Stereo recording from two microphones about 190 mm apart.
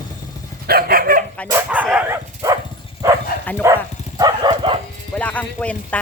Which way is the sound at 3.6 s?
15° right (ahead or behind).